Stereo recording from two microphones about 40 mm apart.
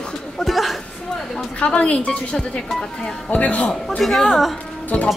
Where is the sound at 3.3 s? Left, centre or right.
Left.